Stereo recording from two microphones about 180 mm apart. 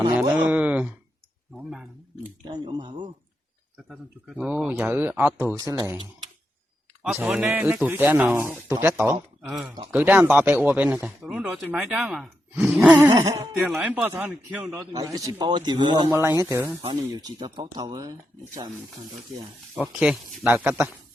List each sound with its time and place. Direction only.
0.2 s speech: 10° right (ahead or behind)
2.4 s speech: 25° right (ahead or behind)
4.4 s speech: 5° right (ahead or behind)
7.0 s speech: centre (ahead or behind)
13.1 s speech: 20° right (ahead or behind)
13.5 s speech: 5° right (ahead or behind); by 18.7 s 20° right (ahead or behind)
20.0 s speech: 5° right (ahead or behind)